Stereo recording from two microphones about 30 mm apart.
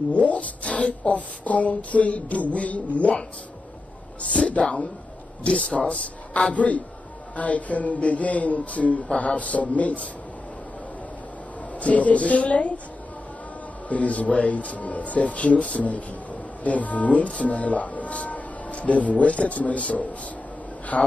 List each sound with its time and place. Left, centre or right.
0.1 s music: left
4.4 s a woman's voice: left
6.5 s music: left
7.3 s speech: left
9.2 s music: left
11.8 s music: left
13.8 s music: left
16.6 s speech: left
20.9 s music: left